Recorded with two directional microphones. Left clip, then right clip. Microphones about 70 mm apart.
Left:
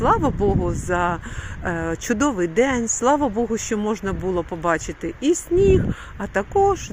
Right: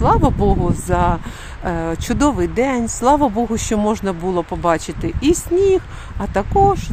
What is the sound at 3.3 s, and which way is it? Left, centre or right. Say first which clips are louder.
Speech: right 3 dB; centre.